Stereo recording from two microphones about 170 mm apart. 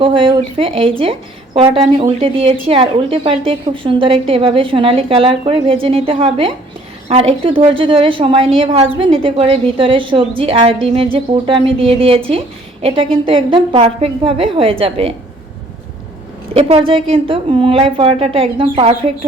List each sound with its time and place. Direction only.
0.0 s a woman's voice: 30° right (ahead or behind)
13.2 s a woman's voice: 30° right (ahead or behind)
16.5 s a woman's voice: 35° right (ahead or behind)